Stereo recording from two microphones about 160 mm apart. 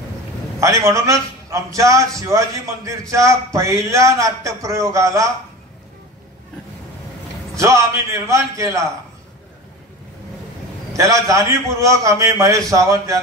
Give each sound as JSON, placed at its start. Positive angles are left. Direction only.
{"t": 0.6, "sound": "a man's voice", "side_deg": -20}
{"t": 7.5, "sound": "a man's voice", "side_deg": -20}
{"t": 11.0, "sound": "a man's voice", "side_deg": -20}